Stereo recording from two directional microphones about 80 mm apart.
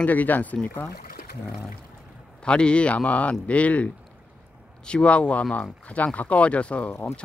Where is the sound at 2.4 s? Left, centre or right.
Centre.